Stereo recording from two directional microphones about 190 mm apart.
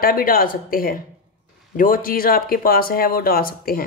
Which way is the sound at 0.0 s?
50° left (ahead or behind).